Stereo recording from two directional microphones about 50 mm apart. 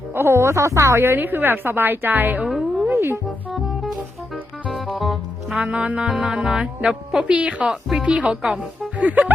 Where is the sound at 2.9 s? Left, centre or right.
Right.